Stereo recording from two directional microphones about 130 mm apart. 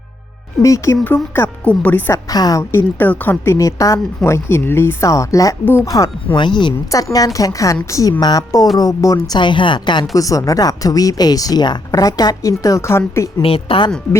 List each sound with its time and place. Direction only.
0.6 s a woman's voice: 25° left (ahead or behind)
1.0 s speech: 15° left (ahead or behind)
2.3 s a woman's voice: 30° left (ahead or behind)
5.9 s a woman's voice: 30° left (ahead or behind)
9.4 s a woman's voice: 40° left (ahead or behind); by 13.2 s 20° left (ahead or behind)
13.4 s a woman's voice: 45° left (ahead or behind)